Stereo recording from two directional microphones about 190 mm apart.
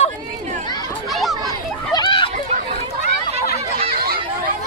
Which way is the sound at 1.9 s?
25° left (ahead or behind).